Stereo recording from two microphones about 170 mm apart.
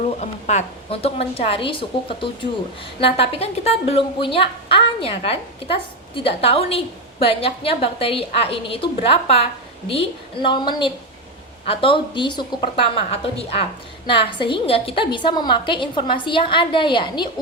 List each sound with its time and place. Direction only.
0.2 s a woman's voice: 40° left (ahead or behind)